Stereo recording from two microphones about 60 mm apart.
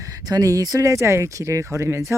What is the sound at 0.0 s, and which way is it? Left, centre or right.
Speech, right.